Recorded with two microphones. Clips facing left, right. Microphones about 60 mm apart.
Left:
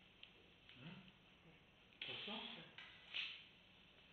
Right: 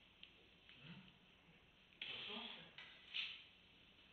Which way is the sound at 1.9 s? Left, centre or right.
Centre.